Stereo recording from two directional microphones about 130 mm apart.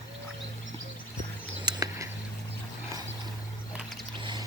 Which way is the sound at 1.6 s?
30° right (ahead or behind).